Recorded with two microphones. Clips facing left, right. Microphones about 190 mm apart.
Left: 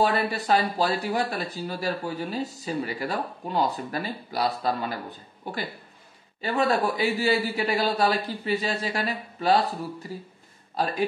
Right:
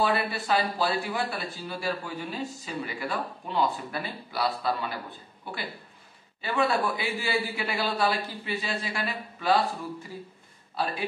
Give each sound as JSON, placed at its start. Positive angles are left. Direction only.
{"t": 0.0, "sound": "speech", "side_deg": 40}